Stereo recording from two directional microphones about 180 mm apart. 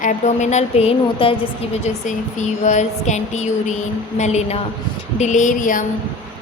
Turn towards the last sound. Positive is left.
turn(degrees=45)  # may be behind; listen again after turning